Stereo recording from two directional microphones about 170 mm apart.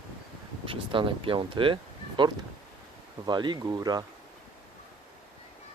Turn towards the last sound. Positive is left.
turn(degrees=-25)  # may be behind; listen again after turning